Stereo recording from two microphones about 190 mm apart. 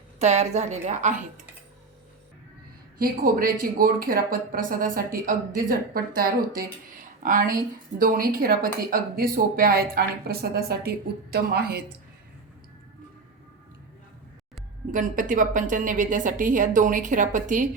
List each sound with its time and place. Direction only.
0.2 s a woman's voice: 35° right (ahead or behind)
3.0 s a woman's voice: 50° right (ahead or behind)
14.9 s a woman's voice: 45° right (ahead or behind)